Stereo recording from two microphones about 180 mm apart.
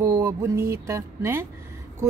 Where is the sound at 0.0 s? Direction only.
20° right (ahead or behind).